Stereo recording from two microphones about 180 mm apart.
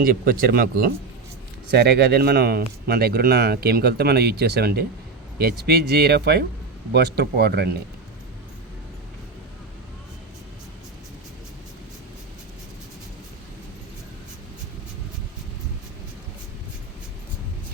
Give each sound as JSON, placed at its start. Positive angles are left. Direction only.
{"t": 0.0, "sound": "speech", "side_deg": -50}